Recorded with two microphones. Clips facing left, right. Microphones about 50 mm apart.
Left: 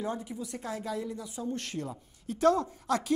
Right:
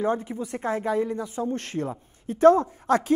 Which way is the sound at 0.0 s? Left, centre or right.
Right.